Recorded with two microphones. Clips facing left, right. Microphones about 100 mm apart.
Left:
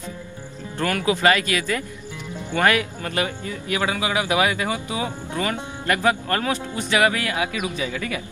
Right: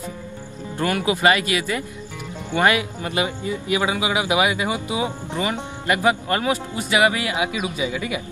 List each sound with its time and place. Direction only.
0.7 s speech: 20° right (ahead or behind)